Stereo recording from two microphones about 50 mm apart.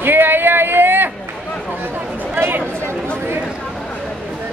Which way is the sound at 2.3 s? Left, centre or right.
Right.